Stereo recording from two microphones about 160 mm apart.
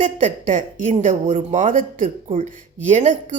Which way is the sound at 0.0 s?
55° right (ahead or behind).